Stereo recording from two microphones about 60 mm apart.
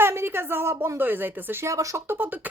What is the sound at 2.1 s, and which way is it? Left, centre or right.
Speech, right.